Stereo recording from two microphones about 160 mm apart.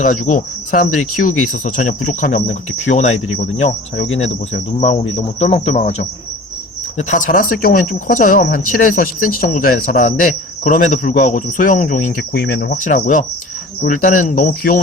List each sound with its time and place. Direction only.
0.0 s speech: 55° left (ahead or behind)
4.8 s insect: 40° left (ahead or behind)
6.9 s speech: 50° left (ahead or behind)
12.3 s cricket: 90° left; by 13.2 s 55° left (ahead or behind)
13.8 s speech: 55° left (ahead or behind)